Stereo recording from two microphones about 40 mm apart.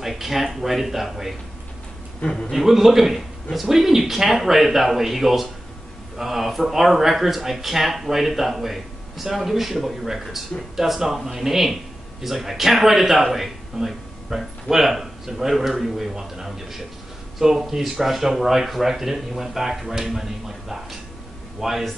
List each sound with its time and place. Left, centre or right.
0.0 s speech: centre
2.5 s speech: centre